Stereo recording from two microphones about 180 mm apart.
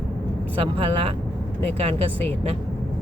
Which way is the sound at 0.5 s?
30° right (ahead or behind).